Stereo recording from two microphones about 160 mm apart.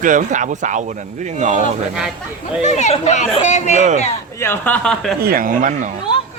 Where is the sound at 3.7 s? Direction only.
50° right (ahead or behind).